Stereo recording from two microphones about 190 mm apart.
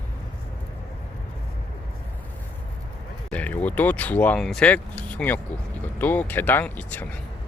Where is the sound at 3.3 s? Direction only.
5° left (ahead or behind).